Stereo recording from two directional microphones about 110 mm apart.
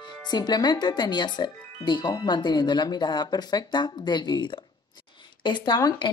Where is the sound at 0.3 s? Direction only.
40° left (ahead or behind).